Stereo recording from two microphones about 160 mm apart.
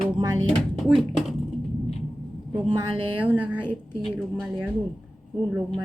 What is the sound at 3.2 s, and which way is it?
A woman's voice, 10° right (ahead or behind).